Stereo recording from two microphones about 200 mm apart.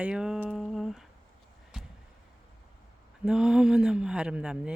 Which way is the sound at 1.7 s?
5° right (ahead or behind).